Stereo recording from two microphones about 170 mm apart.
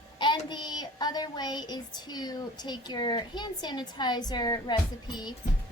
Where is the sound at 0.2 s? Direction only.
25° left (ahead or behind).